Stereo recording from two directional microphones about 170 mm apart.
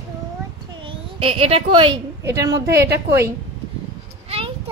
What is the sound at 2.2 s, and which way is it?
A woman's voice, 20° right (ahead or behind).